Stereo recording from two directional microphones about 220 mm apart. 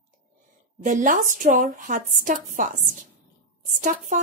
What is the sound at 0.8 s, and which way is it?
A woman's voice, 35° right (ahead or behind).